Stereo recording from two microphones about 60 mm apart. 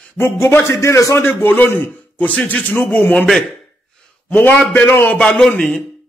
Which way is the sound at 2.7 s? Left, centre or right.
Centre.